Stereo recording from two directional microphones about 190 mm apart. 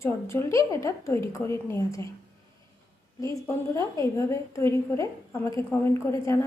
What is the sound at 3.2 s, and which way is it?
A woman's voice, 15° left (ahead or behind).